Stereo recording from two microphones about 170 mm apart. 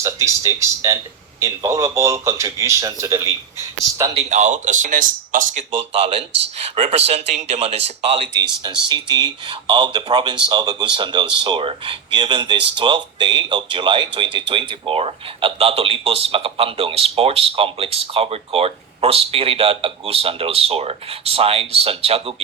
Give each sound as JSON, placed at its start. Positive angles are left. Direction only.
{"t": 0.0, "sound": "speech", "side_deg": -15}
{"t": 4.2, "sound": "speech", "side_deg": -45}
{"t": 5.7, "sound": "speech", "side_deg": -35}
{"t": 8.4, "sound": "speech", "side_deg": -25}